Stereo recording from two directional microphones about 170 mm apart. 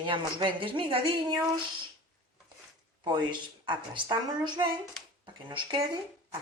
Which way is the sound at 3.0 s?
25° right (ahead or behind).